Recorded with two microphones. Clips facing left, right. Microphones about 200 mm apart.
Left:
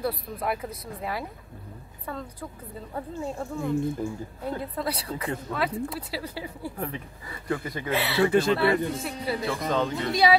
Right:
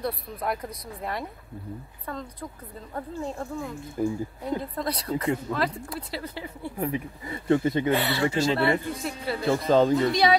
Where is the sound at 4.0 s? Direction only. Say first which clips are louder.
Right 5 dB; 10° right (ahead or behind).